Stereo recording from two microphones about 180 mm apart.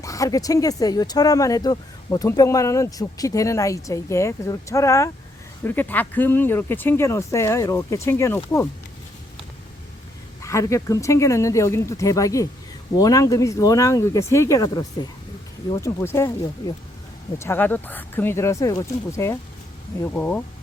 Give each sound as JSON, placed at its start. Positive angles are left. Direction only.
{"t": 0.0, "sound": "speech", "side_deg": 20}
{"t": 10.4, "sound": "speech", "side_deg": 15}